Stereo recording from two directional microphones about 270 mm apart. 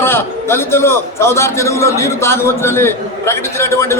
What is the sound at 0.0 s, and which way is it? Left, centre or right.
A man's voice, centre.